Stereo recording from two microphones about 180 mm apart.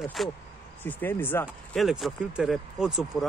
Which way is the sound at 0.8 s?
10° left (ahead or behind).